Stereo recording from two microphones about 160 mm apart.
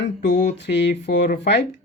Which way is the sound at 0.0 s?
90° left.